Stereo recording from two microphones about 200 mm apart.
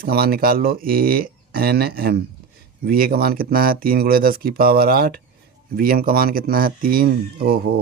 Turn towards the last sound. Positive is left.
turn(degrees=-50)  # may be behind; listen again after turning